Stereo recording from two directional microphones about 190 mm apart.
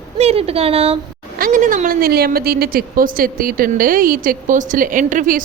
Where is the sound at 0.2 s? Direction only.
30° right (ahead or behind).